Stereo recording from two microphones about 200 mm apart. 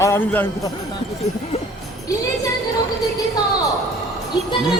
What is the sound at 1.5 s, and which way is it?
Jingle bell, 30° left (ahead or behind).